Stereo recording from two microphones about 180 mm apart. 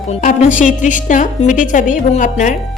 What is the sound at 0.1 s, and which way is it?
A woman's voice, 40° left (ahead or behind).